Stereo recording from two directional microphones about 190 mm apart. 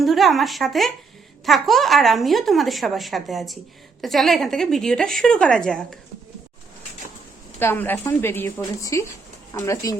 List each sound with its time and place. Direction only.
0.0 s speech: centre (ahead or behind)
7.6 s speech: 10° left (ahead or behind)